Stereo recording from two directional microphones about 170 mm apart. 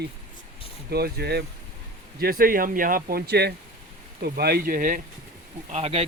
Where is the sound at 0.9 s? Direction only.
70° right (ahead or behind).